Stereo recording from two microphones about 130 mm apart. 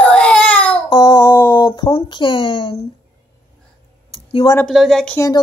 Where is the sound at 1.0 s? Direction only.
25° left (ahead or behind).